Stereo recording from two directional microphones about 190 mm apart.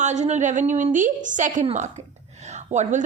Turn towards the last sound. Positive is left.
turn(degrees=-40)  # may be behind; listen again after turning